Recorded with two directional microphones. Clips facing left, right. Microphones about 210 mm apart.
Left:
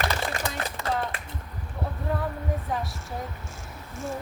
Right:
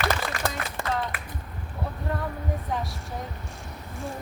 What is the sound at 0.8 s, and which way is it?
Music, 50° right (ahead or behind).